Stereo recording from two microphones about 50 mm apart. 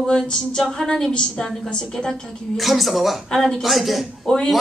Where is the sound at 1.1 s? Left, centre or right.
Centre.